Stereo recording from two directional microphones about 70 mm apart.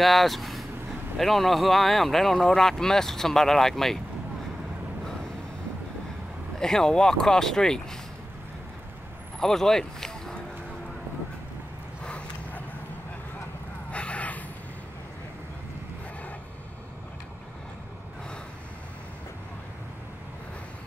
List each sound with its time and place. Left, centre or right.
0.0 s speech: centre
6.6 s speech: centre
9.4 s speech: centre
13.9 s gasp: centre